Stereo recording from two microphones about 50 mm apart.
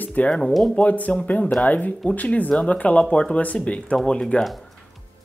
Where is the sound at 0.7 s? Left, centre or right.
Left.